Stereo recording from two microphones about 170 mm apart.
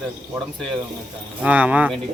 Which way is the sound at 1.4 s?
10° right (ahead or behind).